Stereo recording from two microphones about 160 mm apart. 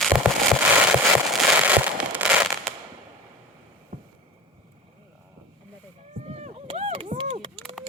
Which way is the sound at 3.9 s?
55° right (ahead or behind).